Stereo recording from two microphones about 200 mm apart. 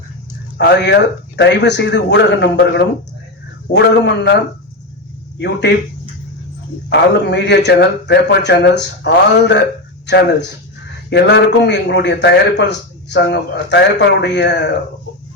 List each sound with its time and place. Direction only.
0.6 s a man's voice: 60° left (ahead or behind)
5.4 s a man's voice: 60° left (ahead or behind)
6.9 s a man's voice: 60° left (ahead or behind)
11.1 s a man's voice: 60° left (ahead or behind)